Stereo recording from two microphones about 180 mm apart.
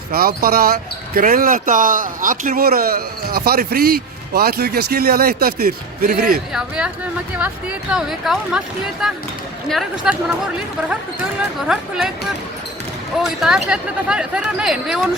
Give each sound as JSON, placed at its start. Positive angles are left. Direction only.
{"t": 0.1, "sound": "speech", "side_deg": -55}
{"t": 6.5, "sound": "speech", "side_deg": -5}
{"t": 11.7, "sound": "speech", "side_deg": -5}
{"t": 13.4, "sound": "speech", "side_deg": -5}